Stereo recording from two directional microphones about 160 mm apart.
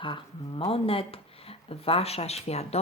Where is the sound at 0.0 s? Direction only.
30° left (ahead or behind).